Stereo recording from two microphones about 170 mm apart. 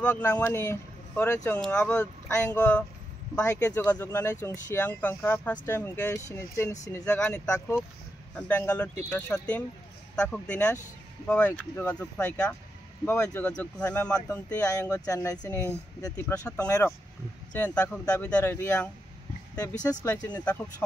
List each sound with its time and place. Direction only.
0.0 s speech: 15° left (ahead or behind)
20.1 s speech: 5° left (ahead or behind)